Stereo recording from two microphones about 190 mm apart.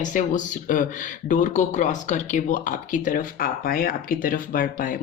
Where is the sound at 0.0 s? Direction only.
40° left (ahead or behind).